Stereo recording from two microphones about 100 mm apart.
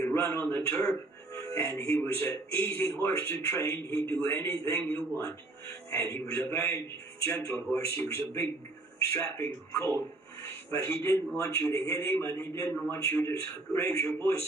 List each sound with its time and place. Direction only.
0.0 s a man's voice: 25° left (ahead or behind)